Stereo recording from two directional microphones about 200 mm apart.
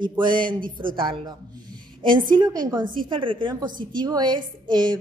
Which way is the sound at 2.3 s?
20° right (ahead or behind).